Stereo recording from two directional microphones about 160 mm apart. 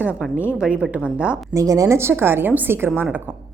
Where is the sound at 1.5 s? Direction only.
20° right (ahead or behind).